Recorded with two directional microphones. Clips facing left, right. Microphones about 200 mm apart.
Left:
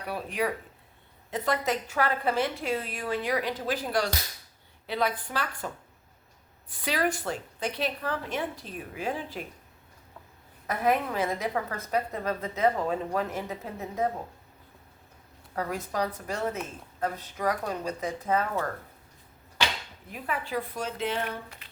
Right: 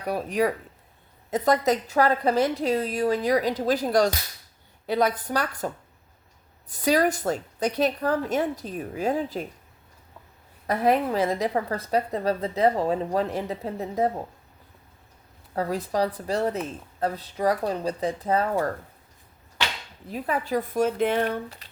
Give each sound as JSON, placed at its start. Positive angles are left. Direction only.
{"t": 0.0, "sound": "a woman's voice", "side_deg": -40}
{"t": 10.7, "sound": "a woman's voice", "side_deg": -35}
{"t": 15.5, "sound": "a woman's voice", "side_deg": -35}
{"t": 20.1, "sound": "a woman's voice", "side_deg": -35}
{"t": 21.2, "sound": "a woman's voice", "side_deg": -35}